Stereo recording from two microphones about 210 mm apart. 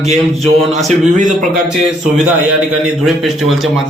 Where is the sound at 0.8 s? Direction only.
35° right (ahead or behind).